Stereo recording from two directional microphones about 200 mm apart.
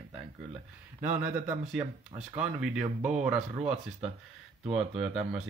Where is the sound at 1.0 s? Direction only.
40° right (ahead or behind).